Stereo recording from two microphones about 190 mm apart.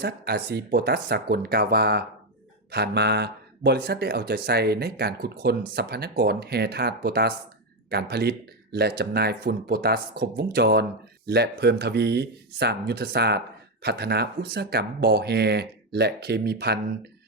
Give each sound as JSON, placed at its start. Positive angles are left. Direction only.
{"t": 0.0, "sound": "speech", "side_deg": -55}